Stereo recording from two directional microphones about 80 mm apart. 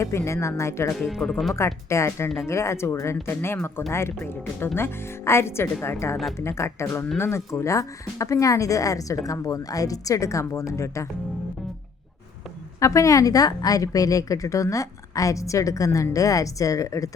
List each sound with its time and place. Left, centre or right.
0.0 s speech: left
0.9 s speech: centre
1.5 s speech: left
12.8 s a woman's voice: left